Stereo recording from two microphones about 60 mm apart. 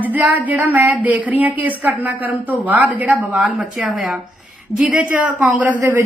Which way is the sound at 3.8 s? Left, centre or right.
Centre.